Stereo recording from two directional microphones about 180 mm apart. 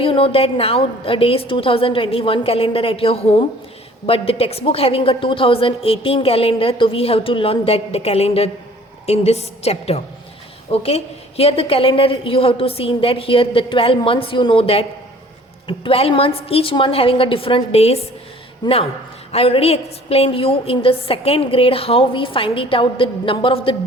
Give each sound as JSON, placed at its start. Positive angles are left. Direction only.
{"t": 0.0, "sound": "a woman's voice", "side_deg": 30}